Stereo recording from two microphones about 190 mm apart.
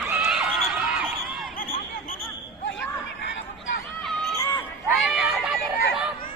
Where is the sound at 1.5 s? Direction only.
50° left (ahead or behind).